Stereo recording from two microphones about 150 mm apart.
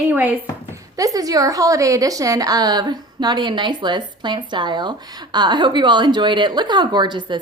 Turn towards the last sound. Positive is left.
turn(degrees=-30)  # may be behind; listen again after turning